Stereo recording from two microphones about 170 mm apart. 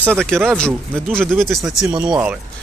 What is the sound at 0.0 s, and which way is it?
Speech, 5° left (ahead or behind).